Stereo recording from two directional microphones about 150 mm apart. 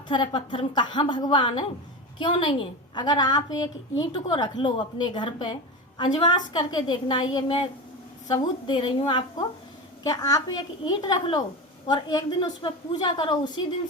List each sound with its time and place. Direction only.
0.1 s a woman's voice: 35° left (ahead or behind)